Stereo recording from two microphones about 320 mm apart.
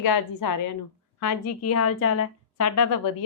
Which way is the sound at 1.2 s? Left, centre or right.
Left.